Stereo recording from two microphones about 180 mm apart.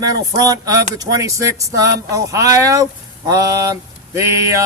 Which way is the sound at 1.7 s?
20° right (ahead or behind).